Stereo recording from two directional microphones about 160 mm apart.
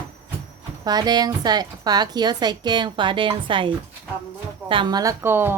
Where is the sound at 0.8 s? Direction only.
25° right (ahead or behind).